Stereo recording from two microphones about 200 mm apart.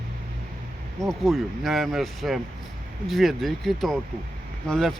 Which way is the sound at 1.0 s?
Centre (ahead or behind).